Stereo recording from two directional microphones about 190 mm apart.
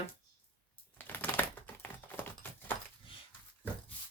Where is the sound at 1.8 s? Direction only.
10° left (ahead or behind).